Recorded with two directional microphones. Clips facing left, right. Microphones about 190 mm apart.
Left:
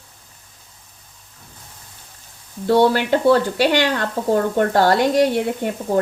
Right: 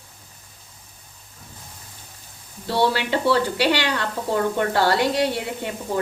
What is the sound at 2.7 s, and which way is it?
A woman's voice, 50° left (ahead or behind).